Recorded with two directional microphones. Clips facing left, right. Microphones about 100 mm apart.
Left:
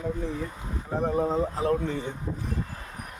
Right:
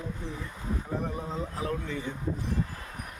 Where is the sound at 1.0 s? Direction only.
35° left (ahead or behind).